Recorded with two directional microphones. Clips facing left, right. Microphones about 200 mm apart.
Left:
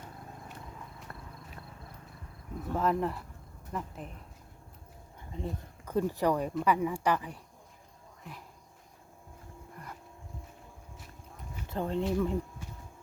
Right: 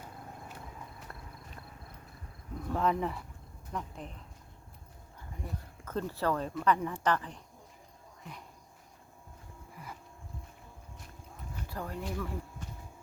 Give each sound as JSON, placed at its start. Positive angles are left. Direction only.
{"t": 2.7, "sound": "speech", "side_deg": 0}
{"t": 5.3, "sound": "speech", "side_deg": 25}
{"t": 9.7, "sound": "a sound", "side_deg": -5}
{"t": 11.7, "sound": "speech", "side_deg": 25}